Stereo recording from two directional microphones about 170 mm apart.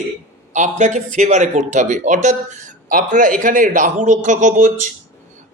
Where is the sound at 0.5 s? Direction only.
45° right (ahead or behind).